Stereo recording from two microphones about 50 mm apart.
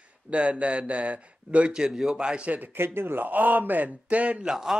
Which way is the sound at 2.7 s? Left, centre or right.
Right.